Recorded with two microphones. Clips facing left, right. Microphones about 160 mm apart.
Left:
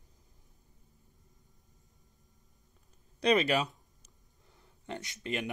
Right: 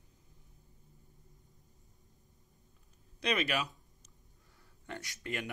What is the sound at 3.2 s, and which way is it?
Speech, 35° left (ahead or behind).